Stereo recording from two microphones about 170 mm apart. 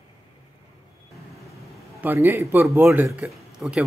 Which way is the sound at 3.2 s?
Centre (ahead or behind).